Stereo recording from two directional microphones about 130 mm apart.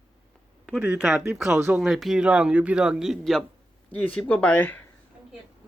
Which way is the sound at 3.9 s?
10° left (ahead or behind).